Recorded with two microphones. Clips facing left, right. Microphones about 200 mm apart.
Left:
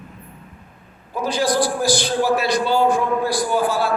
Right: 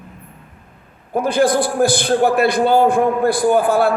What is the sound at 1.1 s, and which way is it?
A man's voice, 55° right (ahead or behind).